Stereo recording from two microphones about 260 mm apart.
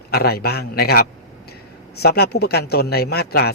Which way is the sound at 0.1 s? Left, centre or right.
Left.